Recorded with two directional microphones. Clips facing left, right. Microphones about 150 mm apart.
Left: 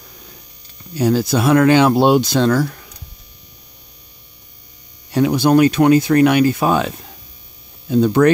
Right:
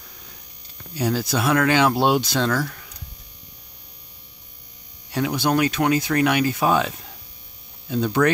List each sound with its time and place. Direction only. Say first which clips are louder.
0.9 s speech: left 7 dB; 40° left (ahead or behind)
5.1 s speech: left 8 dB; 30° left (ahead or behind); by 6.9 s 45° left (ahead or behind)
7.9 s speech: left 7 dB; 35° left (ahead or behind)